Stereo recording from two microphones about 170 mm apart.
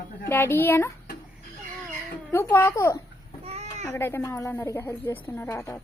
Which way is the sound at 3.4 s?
40° right (ahead or behind).